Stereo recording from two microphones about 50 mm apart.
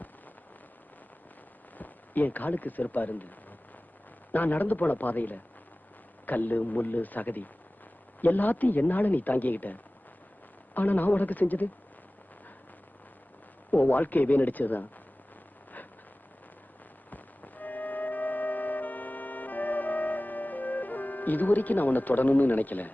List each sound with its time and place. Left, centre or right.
1.8 s speech: left
10.8 s speech: left
13.7 s speech: left
17.1 s music: left